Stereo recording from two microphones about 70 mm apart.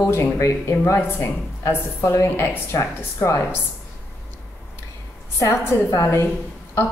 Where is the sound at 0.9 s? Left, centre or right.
Left.